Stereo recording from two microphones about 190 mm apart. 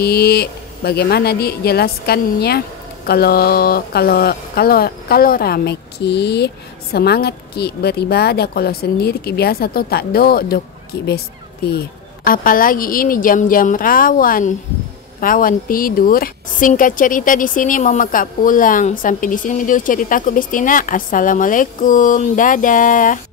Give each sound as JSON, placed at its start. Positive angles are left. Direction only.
{"t": 0.0, "sound": "speech", "side_deg": 55}
{"t": 11.6, "sound": "a woman's voice", "side_deg": 55}